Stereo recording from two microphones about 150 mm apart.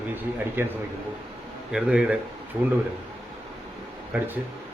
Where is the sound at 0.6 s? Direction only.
15° right (ahead or behind).